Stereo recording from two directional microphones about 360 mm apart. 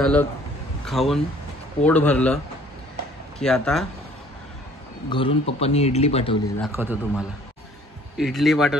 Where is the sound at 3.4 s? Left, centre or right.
Centre.